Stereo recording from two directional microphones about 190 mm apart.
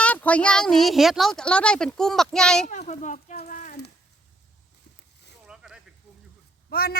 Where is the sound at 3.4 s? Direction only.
45° left (ahead or behind).